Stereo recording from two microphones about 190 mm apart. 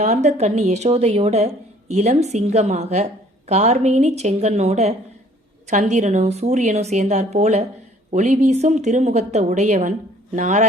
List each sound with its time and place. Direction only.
0.0 s a woman's voice: 35° right (ahead or behind)